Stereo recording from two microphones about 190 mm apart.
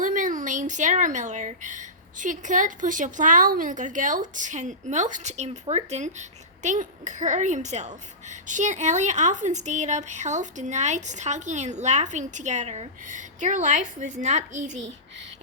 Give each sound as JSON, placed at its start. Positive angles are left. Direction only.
{"t": 0.0, "sound": "a woman's voice", "side_deg": -45}